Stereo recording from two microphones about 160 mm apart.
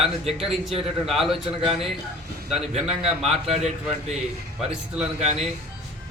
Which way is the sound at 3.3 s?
40° right (ahead or behind).